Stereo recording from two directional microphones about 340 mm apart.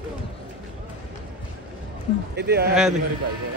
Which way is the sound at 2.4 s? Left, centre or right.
Right.